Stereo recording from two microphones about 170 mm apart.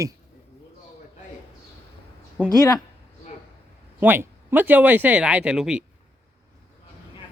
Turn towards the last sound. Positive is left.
turn(degrees=-5)  # may be behind; listen again after turning